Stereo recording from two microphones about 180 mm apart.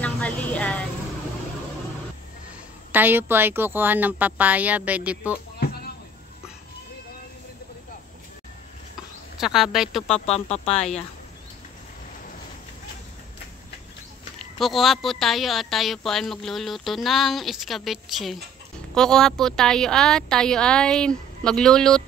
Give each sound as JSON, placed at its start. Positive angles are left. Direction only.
{"t": 0.0, "sound": "a sound", "side_deg": 10}
{"t": 2.9, "sound": "speech", "side_deg": -10}
{"t": 9.4, "sound": "a woman's voice", "side_deg": 0}
{"t": 10.0, "sound": "speech", "side_deg": 35}
{"t": 14.4, "sound": "a woman's voice", "side_deg": 0}